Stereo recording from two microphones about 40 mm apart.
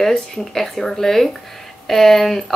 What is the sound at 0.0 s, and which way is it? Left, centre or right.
Speech, centre.